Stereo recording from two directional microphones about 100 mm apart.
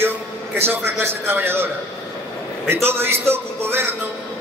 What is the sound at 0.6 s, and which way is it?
A man's voice, 25° right (ahead or behind).